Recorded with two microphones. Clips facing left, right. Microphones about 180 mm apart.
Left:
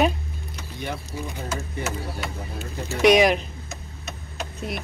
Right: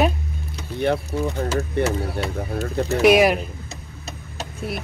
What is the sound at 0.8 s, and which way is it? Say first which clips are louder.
Speech: right 11 dB; 65° right (ahead or behind).